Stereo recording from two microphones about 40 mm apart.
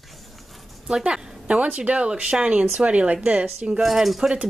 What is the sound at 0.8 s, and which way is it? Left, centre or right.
A woman's voice, right.